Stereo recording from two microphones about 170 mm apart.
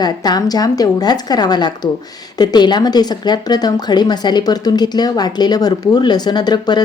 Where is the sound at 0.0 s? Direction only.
25° left (ahead or behind).